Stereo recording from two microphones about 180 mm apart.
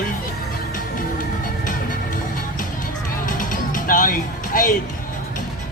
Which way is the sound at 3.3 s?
50° left (ahead or behind).